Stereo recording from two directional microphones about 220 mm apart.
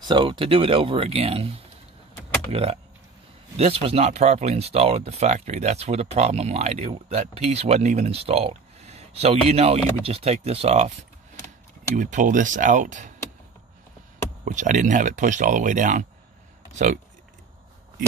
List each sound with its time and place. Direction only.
0.0 s speech: 20° right (ahead or behind)
11.9 s speech: 35° right (ahead or behind)
14.4 s speech: 35° right (ahead or behind)